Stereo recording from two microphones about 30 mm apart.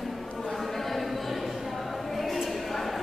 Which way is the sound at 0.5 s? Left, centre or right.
Centre.